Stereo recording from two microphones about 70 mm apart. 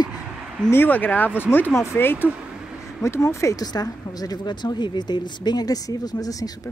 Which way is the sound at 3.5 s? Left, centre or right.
Left.